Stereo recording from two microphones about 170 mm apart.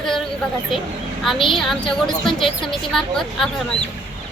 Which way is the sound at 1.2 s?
Centre (ahead or behind).